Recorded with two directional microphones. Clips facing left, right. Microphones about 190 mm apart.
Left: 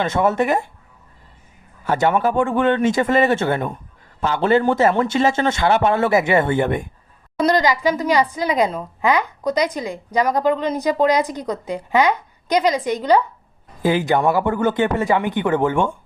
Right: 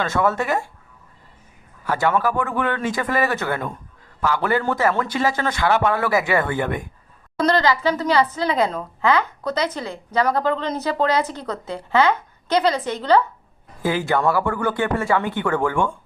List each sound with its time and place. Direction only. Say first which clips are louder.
0.0 s a man's voice: left 3 dB; 20° left (ahead or behind)
1.8 s a man's voice: left 3 dB; 25° left (ahead or behind)